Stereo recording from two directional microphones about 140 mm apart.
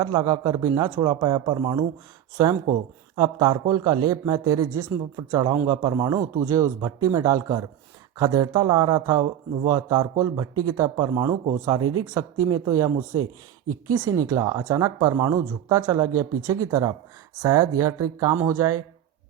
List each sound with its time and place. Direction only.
0.0 s speech: 30° right (ahead or behind)
3.2 s speech: 30° right (ahead or behind)
13.9 s speech: 25° right (ahead or behind)